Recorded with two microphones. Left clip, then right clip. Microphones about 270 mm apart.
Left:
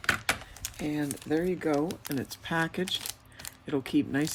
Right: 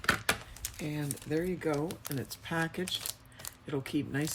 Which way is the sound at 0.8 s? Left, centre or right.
Left.